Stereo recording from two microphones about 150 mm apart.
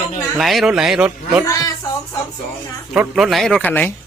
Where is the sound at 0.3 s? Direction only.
Centre (ahead or behind).